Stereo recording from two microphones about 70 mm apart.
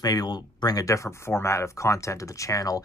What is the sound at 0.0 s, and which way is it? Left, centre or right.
Speech, left.